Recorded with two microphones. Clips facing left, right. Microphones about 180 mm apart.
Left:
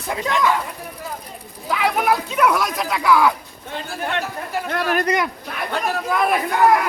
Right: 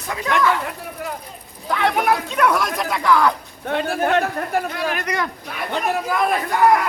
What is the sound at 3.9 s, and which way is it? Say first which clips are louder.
Speech: right 4 dB; 50° right (ahead or behind).